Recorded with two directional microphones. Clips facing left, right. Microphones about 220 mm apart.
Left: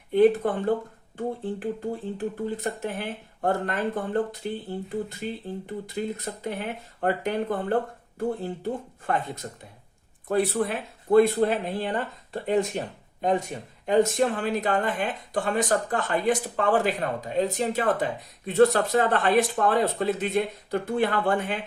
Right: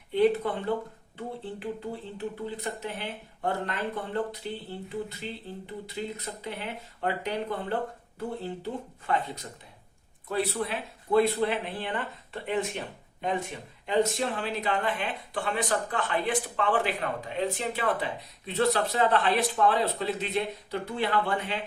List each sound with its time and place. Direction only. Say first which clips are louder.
0.1 s speech: left 4 dB; 50° left (ahead or behind)
13.8 s speech: left 5 dB; 50° left (ahead or behind)